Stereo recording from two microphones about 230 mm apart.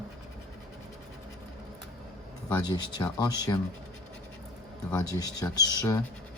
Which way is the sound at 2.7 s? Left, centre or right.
Centre.